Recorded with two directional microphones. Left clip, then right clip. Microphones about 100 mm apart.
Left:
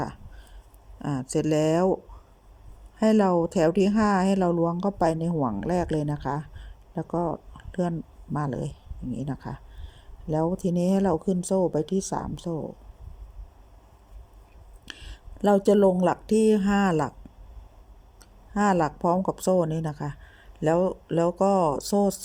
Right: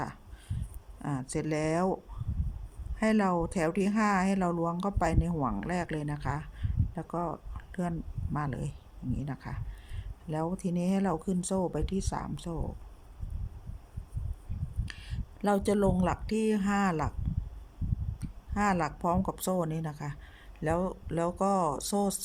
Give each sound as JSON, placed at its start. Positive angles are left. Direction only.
{"t": 0.9, "sound": "speech", "side_deg": 15}
{"t": 3.0, "sound": "speech", "side_deg": 25}
{"t": 14.8, "sound": "a sound", "side_deg": 25}
{"t": 16.0, "sound": "speech", "side_deg": 25}
{"t": 18.2, "sound": "a sound", "side_deg": 20}
{"t": 18.9, "sound": "speech", "side_deg": 15}